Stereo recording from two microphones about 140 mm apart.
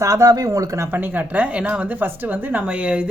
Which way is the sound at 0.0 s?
25° right (ahead or behind).